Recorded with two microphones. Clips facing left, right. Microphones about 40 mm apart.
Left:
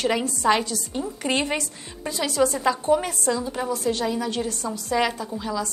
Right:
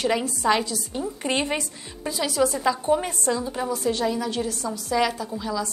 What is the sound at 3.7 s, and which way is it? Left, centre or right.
Speech, left.